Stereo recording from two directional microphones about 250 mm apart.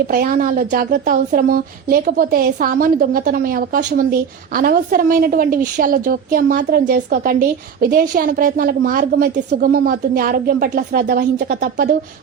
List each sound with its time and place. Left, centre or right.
0.1 s a woman's voice: right